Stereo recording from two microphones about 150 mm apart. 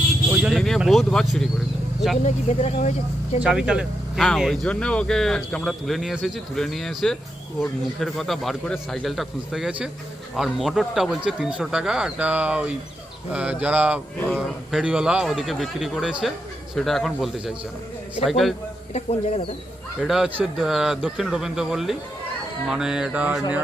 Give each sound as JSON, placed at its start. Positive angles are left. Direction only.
{"t": 0.4, "sound": "speech", "side_deg": 0}
{"t": 2.2, "sound": "speech", "side_deg": 50}
{"t": 3.4, "sound": "speech", "side_deg": -5}
{"t": 18.9, "sound": "speech", "side_deg": 45}
{"t": 20.0, "sound": "speech", "side_deg": -5}